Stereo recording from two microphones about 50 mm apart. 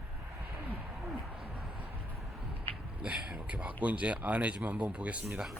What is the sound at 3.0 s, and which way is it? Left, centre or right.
Speech, right.